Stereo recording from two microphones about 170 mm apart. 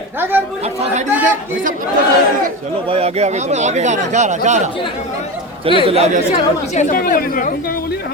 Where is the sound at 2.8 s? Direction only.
35° right (ahead or behind).